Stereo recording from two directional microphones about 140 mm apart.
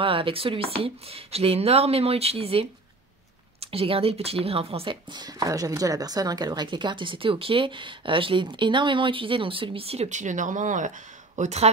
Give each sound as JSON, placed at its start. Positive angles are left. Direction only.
{"t": 0.0, "sound": "speech", "side_deg": -40}
{"t": 11.3, "sound": "speech", "side_deg": -55}